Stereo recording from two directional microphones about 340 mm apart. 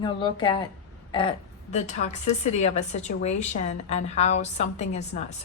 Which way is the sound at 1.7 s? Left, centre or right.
Centre.